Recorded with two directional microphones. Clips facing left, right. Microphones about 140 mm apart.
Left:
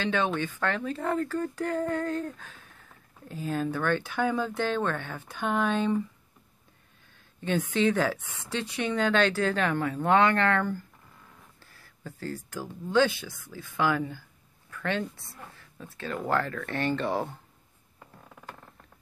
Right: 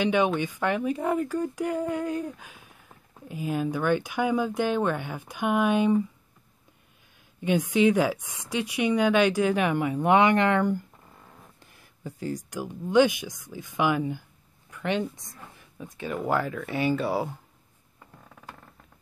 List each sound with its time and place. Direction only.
0.0 s speech: 15° right (ahead or behind)
7.3 s speech: 10° right (ahead or behind)